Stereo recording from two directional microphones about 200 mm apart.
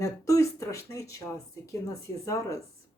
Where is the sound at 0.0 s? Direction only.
15° left (ahead or behind).